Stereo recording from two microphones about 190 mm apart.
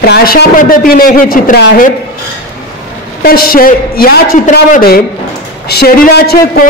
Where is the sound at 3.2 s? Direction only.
50° left (ahead or behind).